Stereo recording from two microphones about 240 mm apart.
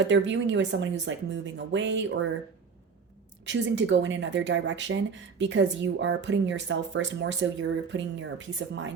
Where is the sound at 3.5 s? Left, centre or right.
Right.